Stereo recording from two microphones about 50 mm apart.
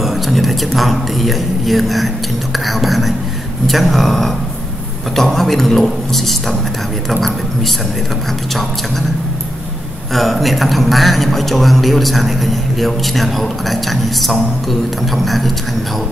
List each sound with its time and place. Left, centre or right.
0.0 s a man's voice: centre
10.1 s a man's voice: centre